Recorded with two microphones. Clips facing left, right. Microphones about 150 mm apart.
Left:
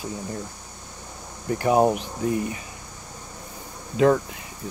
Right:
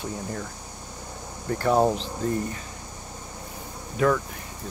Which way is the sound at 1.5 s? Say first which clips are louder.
Left 2 dB; 15° left (ahead or behind).